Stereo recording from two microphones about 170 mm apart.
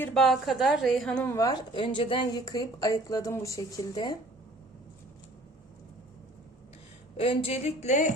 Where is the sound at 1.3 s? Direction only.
20° left (ahead or behind).